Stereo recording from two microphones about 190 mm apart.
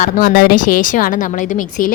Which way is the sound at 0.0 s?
50° left (ahead or behind).